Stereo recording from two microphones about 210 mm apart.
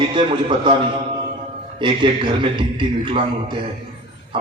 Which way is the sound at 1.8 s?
25° right (ahead or behind).